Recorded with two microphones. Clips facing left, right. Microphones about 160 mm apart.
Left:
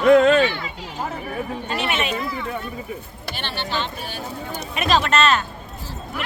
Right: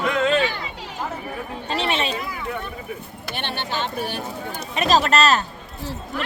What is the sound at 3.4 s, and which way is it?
Speech, 55° right (ahead or behind).